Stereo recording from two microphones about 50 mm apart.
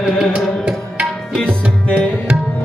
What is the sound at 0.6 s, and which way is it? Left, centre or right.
Tabla, centre.